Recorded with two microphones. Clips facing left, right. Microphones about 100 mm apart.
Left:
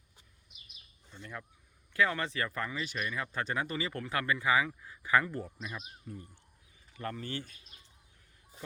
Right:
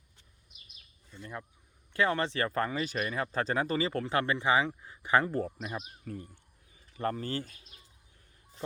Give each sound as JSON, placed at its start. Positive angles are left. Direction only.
{"t": 1.2, "sound": "speech", "side_deg": -25}
{"t": 5.5, "sound": "speech", "side_deg": -40}
{"t": 6.1, "sound": "speech", "side_deg": -65}
{"t": 6.9, "sound": "speech", "side_deg": -40}